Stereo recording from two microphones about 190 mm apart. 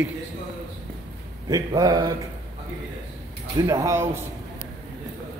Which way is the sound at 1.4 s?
20° right (ahead or behind).